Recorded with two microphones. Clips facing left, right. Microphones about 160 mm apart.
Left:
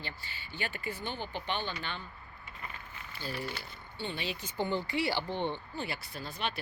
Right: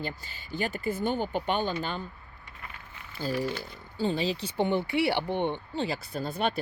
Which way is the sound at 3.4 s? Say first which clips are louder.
Right 8 dB; 40° right (ahead or behind).